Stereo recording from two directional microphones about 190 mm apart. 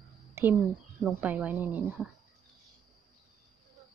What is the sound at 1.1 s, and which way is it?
Speech, 10° right (ahead or behind).